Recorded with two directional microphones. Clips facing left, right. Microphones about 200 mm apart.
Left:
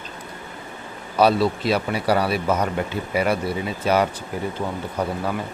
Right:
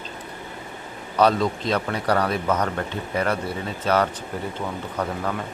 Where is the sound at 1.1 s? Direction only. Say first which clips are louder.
Left 2 dB; 10° left (ahead or behind).